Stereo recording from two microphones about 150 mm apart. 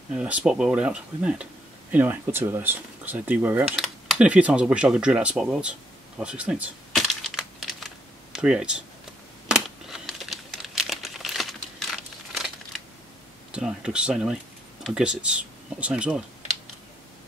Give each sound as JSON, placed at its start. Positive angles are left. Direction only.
{"t": 0.1, "sound": "speech", "side_deg": -5}
{"t": 3.7, "sound": "speech", "side_deg": 0}
{"t": 6.9, "sound": "crumpling", "side_deg": 0}
{"t": 13.5, "sound": "speech", "side_deg": -5}